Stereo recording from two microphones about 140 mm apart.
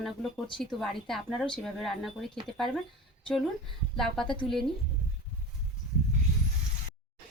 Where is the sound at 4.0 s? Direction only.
5° left (ahead or behind).